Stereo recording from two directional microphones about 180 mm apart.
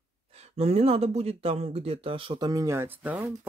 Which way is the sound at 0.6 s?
35° right (ahead or behind).